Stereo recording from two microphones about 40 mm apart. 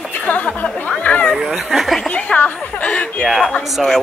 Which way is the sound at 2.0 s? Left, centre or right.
Left.